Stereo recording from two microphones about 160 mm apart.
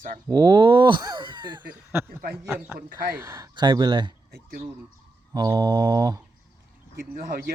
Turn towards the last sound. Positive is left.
turn(degrees=-70)  # may be behind; listen again after turning